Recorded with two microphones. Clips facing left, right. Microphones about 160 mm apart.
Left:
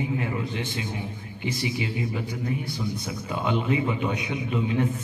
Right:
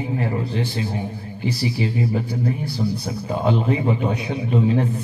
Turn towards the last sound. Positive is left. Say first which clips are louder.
# right 6 dB
turn(degrees=-35)  # may be behind; listen again after turning